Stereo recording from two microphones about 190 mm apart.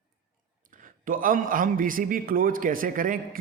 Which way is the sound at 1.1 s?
45° right (ahead or behind).